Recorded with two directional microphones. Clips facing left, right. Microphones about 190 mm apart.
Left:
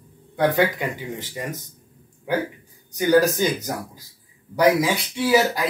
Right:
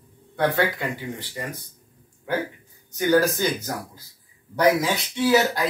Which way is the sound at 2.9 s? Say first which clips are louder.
Left 2 dB; 15° left (ahead or behind).